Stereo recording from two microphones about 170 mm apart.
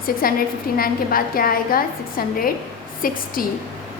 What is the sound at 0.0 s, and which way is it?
A woman's voice, 60° left (ahead or behind).